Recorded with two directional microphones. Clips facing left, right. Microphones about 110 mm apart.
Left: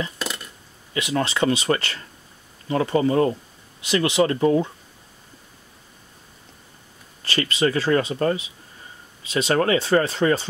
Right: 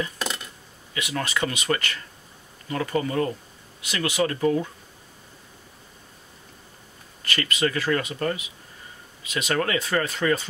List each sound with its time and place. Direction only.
0.9 s speech: 30° left (ahead or behind)
7.2 s speech: 30° left (ahead or behind)